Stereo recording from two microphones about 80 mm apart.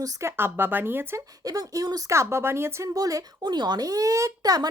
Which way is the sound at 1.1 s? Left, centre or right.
Right.